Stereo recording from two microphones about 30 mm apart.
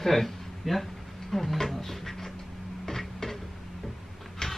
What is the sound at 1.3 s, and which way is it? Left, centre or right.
Speech, centre.